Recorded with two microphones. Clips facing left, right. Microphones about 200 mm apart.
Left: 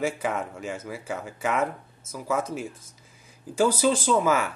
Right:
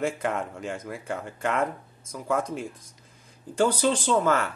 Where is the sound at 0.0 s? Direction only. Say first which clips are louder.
Even; 5° left (ahead or behind).